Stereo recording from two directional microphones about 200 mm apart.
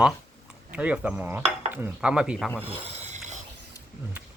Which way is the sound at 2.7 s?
35° right (ahead or behind).